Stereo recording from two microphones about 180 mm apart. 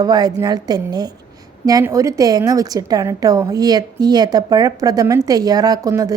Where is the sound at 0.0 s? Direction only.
20° right (ahead or behind).